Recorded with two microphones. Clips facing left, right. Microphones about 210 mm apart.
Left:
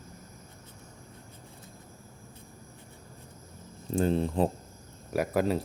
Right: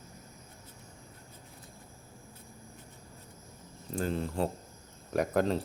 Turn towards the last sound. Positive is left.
turn(degrees=5)  # may be behind; listen again after turning